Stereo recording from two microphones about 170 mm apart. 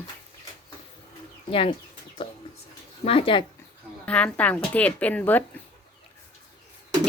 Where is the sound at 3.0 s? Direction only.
30° left (ahead or behind).